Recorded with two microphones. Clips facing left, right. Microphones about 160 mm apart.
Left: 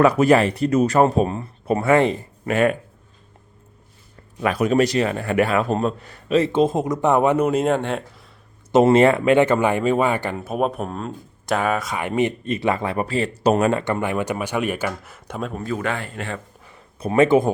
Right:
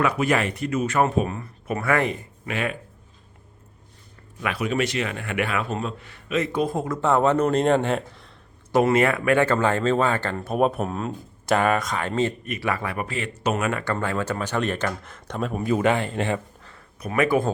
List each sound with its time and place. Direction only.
0.0 s a man's voice: 35° left (ahead or behind)
2.5 s speech: 45° left (ahead or behind)
4.4 s a man's voice: 40° left (ahead or behind); by 8.3 s centre (ahead or behind)
8.7 s a man's voice: 25° left (ahead or behind)
13.8 s speech: 15° left (ahead or behind)
15.5 s speech: 20° right (ahead or behind)
17.0 s speech: 25° left (ahead or behind)